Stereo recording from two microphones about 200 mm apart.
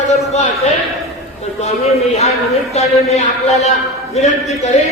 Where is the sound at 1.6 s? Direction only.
30° left (ahead or behind).